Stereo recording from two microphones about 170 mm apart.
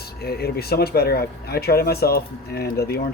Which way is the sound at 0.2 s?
65° left (ahead or behind).